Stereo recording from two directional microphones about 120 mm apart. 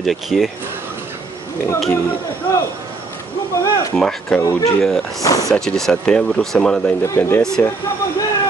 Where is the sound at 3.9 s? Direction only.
5° left (ahead or behind).